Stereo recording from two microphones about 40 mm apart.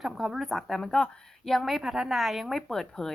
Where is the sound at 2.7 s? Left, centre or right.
Centre.